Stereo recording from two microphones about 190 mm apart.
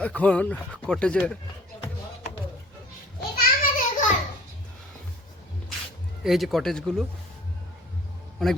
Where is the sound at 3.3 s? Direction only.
50° left (ahead or behind).